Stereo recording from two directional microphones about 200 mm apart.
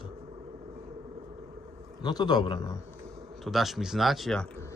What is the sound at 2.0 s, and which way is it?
Speech, 20° left (ahead or behind).